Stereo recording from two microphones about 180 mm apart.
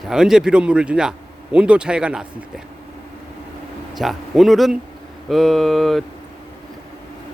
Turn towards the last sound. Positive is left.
turn(degrees=0)  # may be behind; listen again after turning